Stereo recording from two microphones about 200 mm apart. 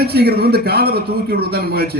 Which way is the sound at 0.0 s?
50° right (ahead or behind).